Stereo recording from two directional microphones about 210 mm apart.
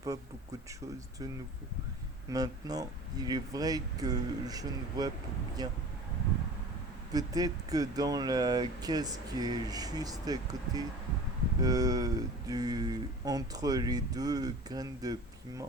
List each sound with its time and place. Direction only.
2.3 s speech: 15° right (ahead or behind)
7.1 s speech: 15° right (ahead or behind)